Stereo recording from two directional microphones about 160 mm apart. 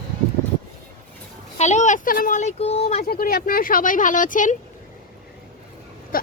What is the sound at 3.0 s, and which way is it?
Speech, 65° left (ahead or behind).